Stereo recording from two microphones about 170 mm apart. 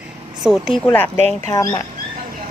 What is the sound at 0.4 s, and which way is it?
Speech, centre (ahead or behind).